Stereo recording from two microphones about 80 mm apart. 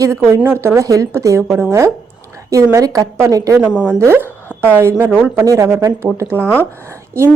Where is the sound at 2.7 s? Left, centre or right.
Right.